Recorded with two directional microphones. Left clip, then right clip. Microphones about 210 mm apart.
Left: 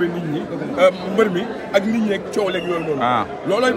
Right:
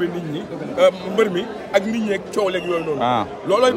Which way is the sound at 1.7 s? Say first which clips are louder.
Left 1 dB; centre (ahead or behind).